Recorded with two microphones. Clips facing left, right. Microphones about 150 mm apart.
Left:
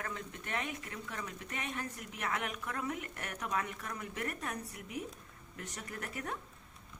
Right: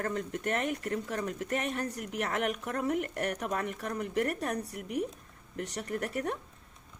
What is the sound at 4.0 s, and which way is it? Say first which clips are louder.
Speech: right 10 dB; 55° right (ahead or behind).